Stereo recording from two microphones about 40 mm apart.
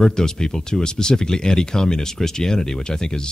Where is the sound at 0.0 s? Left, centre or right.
Centre.